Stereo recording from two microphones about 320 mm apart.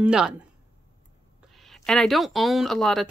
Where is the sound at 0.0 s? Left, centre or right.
Centre.